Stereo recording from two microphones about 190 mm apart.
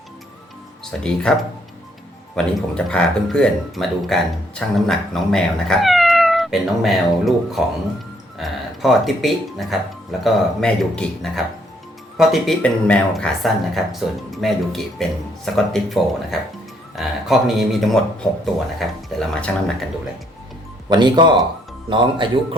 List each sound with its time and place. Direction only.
0.9 s speech: 5° left (ahead or behind)
2.3 s speech: 5° left (ahead or behind)
20.9 s speech: 25° right (ahead or behind)